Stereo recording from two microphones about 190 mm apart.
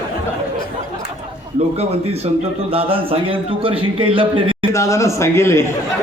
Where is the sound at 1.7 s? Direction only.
35° right (ahead or behind).